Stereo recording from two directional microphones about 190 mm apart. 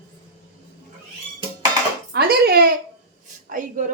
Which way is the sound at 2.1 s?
55° right (ahead or behind).